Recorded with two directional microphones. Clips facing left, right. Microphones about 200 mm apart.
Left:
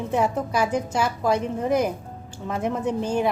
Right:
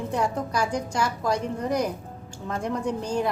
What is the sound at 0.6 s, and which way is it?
Speech, 5° left (ahead or behind).